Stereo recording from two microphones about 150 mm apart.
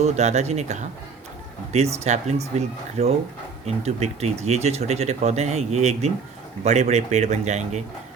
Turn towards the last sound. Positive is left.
turn(degrees=-50)  # may be behind; listen again after turning